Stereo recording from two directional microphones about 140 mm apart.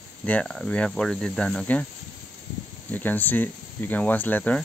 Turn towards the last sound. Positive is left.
turn(degrees=10)  # may be behind; listen again after turning